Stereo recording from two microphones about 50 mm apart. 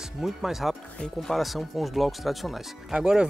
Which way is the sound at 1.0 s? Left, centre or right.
Centre.